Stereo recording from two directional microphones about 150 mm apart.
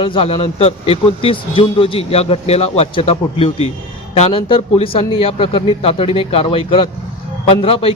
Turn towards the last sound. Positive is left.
turn(degrees=40)  # may be behind; listen again after turning